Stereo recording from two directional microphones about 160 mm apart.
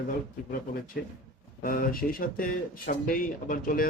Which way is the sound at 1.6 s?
65° left (ahead or behind).